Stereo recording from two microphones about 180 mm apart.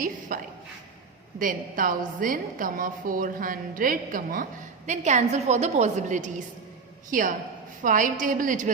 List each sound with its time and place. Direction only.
0.0 s a woman's voice: 50° right (ahead or behind)